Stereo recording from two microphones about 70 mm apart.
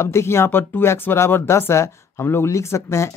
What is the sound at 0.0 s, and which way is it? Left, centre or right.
Speech, left.